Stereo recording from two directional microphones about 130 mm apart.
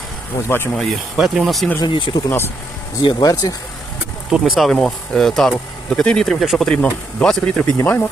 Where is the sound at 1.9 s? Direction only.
40° left (ahead or behind).